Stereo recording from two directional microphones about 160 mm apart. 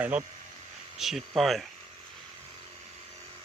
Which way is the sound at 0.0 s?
10° right (ahead or behind).